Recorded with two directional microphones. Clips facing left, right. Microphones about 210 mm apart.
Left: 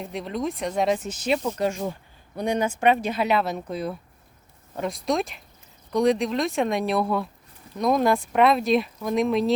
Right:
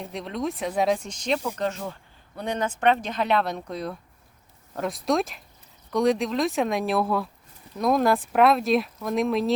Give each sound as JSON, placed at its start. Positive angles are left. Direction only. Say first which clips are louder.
{"t": 0.0, "sound": "speech", "louder": "left 1 dB", "side_deg": 0}